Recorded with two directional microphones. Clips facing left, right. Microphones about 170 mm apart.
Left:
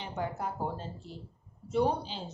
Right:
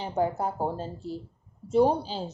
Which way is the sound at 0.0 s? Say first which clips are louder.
Right 8 dB; 35° right (ahead or behind).